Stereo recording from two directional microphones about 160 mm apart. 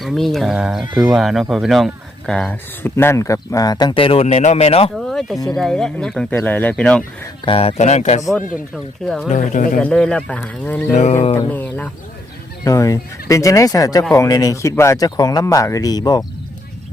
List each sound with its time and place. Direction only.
0.0 s speech: centre (ahead or behind); by 4.9 s 40° left (ahead or behind)
4.9 s a sound: centre (ahead or behind)
5.5 s speech: 5° left (ahead or behind)
7.4 s speech: 35° left (ahead or behind)
8.7 s speech: centre (ahead or behind)
9.3 s speech: 45° left (ahead or behind)
9.7 s speech: 5° left (ahead or behind)
10.9 s speech: 45° left (ahead or behind)
11.3 s speech: 10° left (ahead or behind)